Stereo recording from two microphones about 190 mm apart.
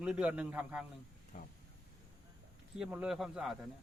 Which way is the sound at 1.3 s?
40° left (ahead or behind).